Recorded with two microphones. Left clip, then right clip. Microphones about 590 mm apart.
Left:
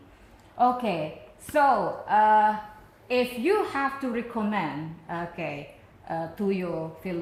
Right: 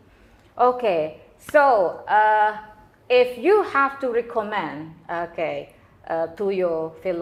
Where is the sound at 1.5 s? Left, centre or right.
Right.